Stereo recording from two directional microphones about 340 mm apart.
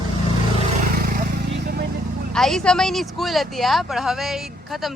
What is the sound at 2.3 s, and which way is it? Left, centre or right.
Speech, centre.